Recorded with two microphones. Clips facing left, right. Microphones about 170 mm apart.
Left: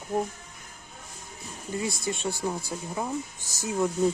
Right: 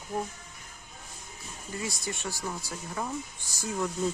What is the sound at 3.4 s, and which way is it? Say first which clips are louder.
Speech: left 2 dB; 45° left (ahead or behind).